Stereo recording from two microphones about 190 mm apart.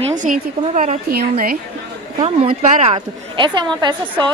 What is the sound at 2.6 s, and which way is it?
Speech, 40° right (ahead or behind).